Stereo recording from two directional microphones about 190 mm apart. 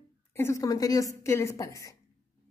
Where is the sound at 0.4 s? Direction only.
15° left (ahead or behind).